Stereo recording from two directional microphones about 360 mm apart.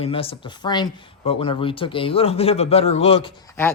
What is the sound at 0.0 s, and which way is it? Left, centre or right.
Speech, centre.